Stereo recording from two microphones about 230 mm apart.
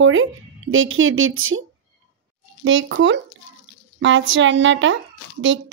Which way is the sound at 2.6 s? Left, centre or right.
Right.